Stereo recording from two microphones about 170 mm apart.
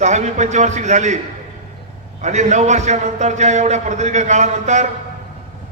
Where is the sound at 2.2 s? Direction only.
45° right (ahead or behind).